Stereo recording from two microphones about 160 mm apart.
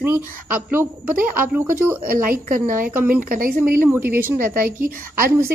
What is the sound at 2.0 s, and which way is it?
Speech, 60° right (ahead or behind).